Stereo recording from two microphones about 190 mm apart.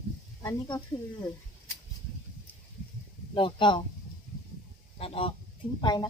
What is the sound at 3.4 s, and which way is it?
Speech, 25° left (ahead or behind).